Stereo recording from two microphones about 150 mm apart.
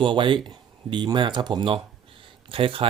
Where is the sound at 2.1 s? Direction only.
35° right (ahead or behind).